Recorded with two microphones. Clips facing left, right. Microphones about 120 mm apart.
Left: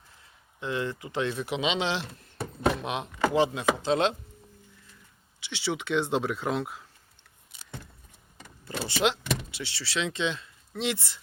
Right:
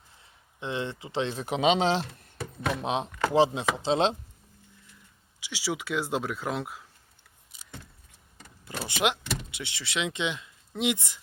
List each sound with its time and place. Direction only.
0.6 s speech: 25° right (ahead or behind)
1.5 s speech: 45° right (ahead or behind)
2.8 s speech: 30° right (ahead or behind)
5.4 s speech: 10° right (ahead or behind)
8.6 s vehicle: 15° right (ahead or behind)
9.5 s speech: 15° right (ahead or behind)